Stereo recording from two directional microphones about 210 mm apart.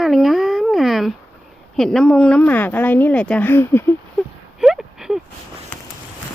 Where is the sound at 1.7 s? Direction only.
Centre (ahead or behind).